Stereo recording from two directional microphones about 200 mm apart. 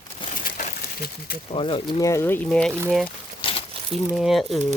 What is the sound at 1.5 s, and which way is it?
Speech, 25° left (ahead or behind).